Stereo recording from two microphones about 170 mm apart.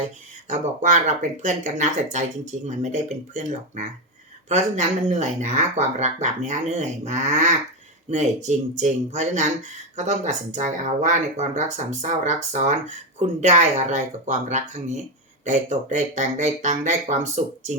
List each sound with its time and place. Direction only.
0.8 s speech: 45° right (ahead or behind)
16.1 s speech: 45° right (ahead or behind)